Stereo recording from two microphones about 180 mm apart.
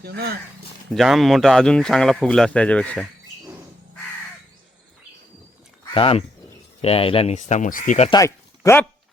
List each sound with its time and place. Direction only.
0.0 s speech: 60° right (ahead or behind)
0.9 s speech: centre (ahead or behind)
5.9 s speech: 30° left (ahead or behind)
8.1 s speech: 15° left (ahead or behind)